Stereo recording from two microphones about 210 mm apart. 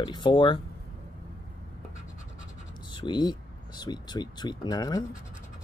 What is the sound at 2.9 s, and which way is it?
Speech, 20° left (ahead or behind).